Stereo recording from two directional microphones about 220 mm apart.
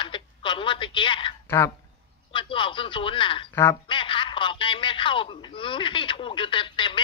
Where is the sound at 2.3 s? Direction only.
20° left (ahead or behind).